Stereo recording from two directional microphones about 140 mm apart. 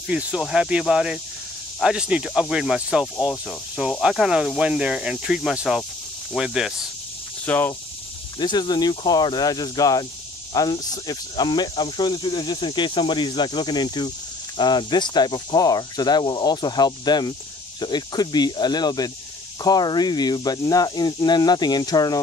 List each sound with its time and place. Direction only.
0.1 s speech: 10° right (ahead or behind)
7.4 s speech: 15° left (ahead or behind)
8.4 s speech: 30° left (ahead or behind)